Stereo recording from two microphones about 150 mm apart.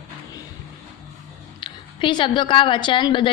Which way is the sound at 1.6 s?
30° left (ahead or behind).